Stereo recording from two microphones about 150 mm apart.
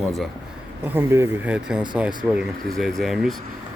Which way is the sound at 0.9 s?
15° right (ahead or behind).